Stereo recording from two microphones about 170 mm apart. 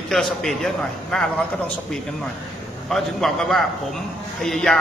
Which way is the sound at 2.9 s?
Centre (ahead or behind).